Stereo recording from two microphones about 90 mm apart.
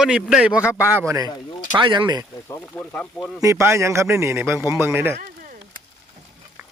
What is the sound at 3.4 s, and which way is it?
A man's voice, 35° right (ahead or behind).